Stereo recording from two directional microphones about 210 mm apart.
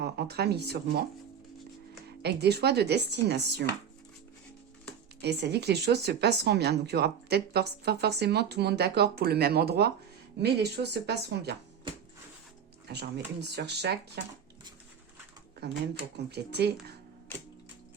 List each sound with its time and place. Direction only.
0.0 s speech: 50° right (ahead or behind)
2.2 s speech: 50° right (ahead or behind)
5.2 s speech: 55° right (ahead or behind)
12.9 s speech: 50° right (ahead or behind)
15.6 s speech: 50° right (ahead or behind)